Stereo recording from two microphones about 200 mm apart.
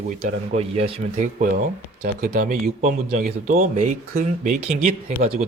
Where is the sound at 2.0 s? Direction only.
45° right (ahead or behind).